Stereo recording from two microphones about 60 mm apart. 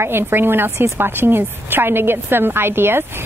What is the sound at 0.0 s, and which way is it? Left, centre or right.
Speech, right.